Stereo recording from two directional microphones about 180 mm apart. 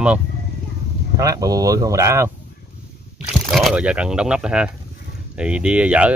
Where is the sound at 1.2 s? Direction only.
20° right (ahead or behind).